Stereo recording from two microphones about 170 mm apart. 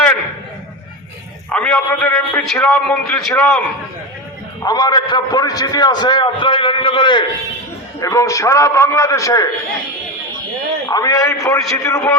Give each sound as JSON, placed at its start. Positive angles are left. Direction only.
{"t": 1.5, "sound": "a man's voice", "side_deg": 5}
{"t": 4.6, "sound": "a man's voice", "side_deg": 20}
{"t": 10.8, "sound": "a man's voice", "side_deg": 20}